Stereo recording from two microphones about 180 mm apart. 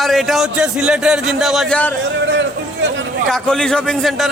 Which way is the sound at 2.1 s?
80° right.